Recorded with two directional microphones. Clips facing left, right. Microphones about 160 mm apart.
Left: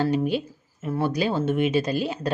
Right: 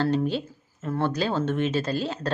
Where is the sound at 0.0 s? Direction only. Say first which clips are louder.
Left 1 dB; 10° left (ahead or behind).